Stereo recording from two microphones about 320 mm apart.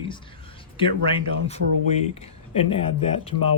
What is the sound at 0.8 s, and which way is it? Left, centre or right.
Speech, centre.